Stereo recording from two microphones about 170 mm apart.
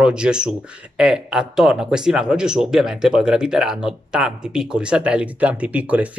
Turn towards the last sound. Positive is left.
turn(degrees=-10)  # may be behind; listen again after turning